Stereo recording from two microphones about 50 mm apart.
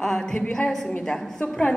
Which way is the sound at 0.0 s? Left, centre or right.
Centre.